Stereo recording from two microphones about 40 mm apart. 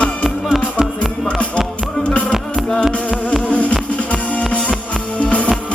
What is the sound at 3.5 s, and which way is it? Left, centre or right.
Insect, left.